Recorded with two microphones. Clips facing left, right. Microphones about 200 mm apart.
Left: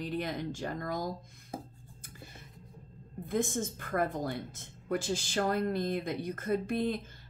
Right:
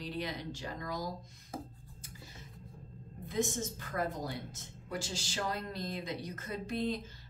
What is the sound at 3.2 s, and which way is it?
A woman's voice, 55° left (ahead or behind).